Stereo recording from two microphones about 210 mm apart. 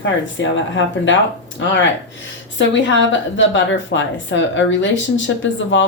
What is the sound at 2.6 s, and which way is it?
A woman's voice, 60° left (ahead or behind).